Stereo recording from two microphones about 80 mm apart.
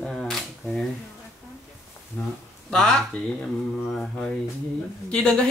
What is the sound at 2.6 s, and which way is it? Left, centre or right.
Speech, centre.